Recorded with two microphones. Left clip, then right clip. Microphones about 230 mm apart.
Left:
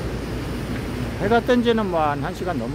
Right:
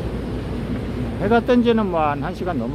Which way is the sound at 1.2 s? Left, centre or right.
Centre.